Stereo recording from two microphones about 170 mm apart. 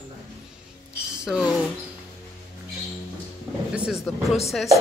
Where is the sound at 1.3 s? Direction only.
Centre (ahead or behind).